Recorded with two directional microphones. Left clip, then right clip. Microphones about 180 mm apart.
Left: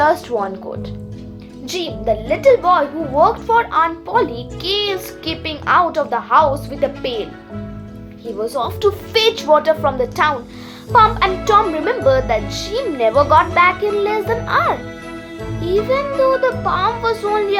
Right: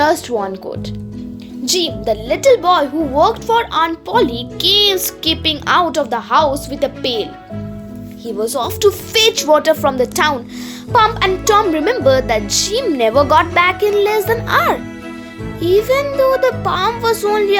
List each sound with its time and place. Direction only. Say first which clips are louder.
0.0 s a child's voice: right 1 dB; 40° right (ahead or behind)
1.6 s a child's voice: right 3 dB; 50° right (ahead or behind)
8.4 s a child's voice: right 3 dB; 45° right (ahead or behind)